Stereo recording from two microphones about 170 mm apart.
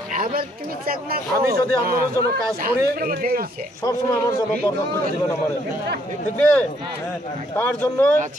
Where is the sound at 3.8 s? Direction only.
20° left (ahead or behind).